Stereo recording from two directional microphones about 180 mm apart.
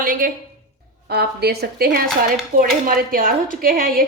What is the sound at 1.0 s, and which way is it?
A woman's voice, 65° right (ahead or behind).